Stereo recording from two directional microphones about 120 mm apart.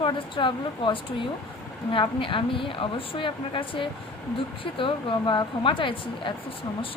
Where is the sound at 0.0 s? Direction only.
45° left (ahead or behind).